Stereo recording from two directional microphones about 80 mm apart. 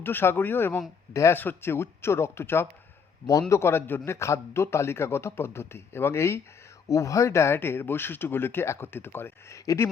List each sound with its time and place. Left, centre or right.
0.0 s speech: left
1.1 s a man's voice: left
1.4 s a man's voice: left